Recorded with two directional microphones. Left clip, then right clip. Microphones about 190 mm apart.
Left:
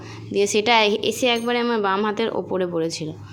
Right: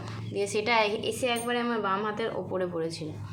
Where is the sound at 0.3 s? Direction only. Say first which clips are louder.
Left 8 dB; 45° left (ahead or behind).